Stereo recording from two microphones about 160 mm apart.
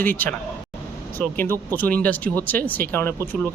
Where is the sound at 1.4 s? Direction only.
10° left (ahead or behind).